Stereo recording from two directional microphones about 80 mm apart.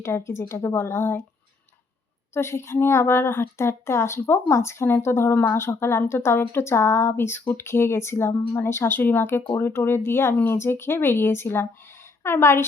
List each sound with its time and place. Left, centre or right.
0.0 s a woman's voice: left
2.3 s a woman's voice: left